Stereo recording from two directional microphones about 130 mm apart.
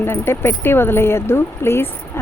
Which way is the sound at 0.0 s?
20° left (ahead or behind).